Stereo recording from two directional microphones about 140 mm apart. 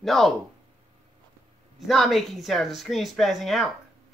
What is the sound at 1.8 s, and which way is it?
Speech, centre (ahead or behind).